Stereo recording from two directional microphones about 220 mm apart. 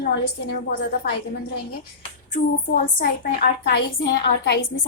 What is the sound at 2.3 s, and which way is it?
A child's voice, 40° left (ahead or behind).